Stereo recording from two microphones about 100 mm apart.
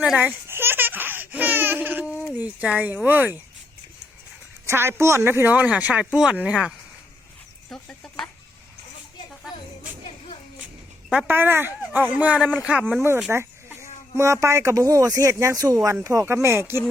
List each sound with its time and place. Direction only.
0.4 s baby laughter: 25° right (ahead or behind)
2.3 s speech: 15° right (ahead or behind)
4.6 s speech: 25° right (ahead or behind); by 6.7 s 10° right (ahead or behind)
7.7 s a sound: 10° left (ahead or behind)
11.1 s speech: 15° right (ahead or behind)
12.4 s speech: 10° left (ahead or behind)
12.9 s speech: 25° right (ahead or behind)
13.3 s chicken: 25° right (ahead or behind)
14.2 s speech: 30° right (ahead or behind)